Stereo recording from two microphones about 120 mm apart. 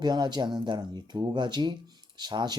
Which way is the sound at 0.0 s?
35° right (ahead or behind).